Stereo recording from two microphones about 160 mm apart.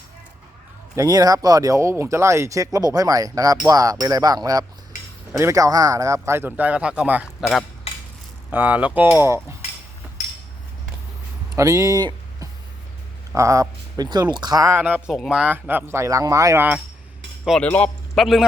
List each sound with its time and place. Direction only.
0.9 s speech: 20° right (ahead or behind)
8.4 s speech: 10° right (ahead or behind)
11.5 s speech: 20° right (ahead or behind)
17.4 s speech: centre (ahead or behind)